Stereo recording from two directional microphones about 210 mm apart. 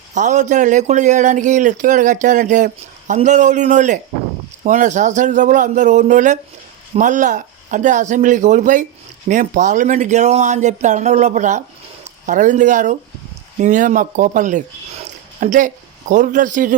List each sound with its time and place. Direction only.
0.1 s speech: 35° right (ahead or behind)